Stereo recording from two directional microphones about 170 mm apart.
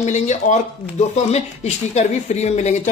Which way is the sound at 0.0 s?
45° left (ahead or behind).